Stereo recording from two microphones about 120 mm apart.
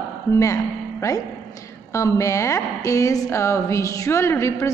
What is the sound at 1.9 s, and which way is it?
A woman's voice, 25° left (ahead or behind).